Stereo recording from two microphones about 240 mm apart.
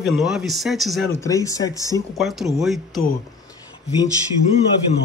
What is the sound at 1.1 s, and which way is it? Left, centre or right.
Speech, centre.